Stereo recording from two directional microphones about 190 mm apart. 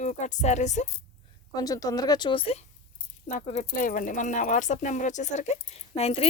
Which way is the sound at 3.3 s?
40° left (ahead or behind).